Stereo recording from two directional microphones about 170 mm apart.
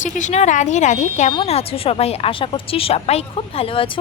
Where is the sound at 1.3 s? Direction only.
35° left (ahead or behind).